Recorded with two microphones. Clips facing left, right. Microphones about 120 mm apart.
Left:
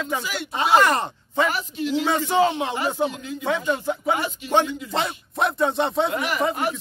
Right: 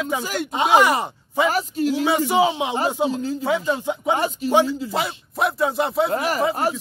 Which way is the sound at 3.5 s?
10° right (ahead or behind).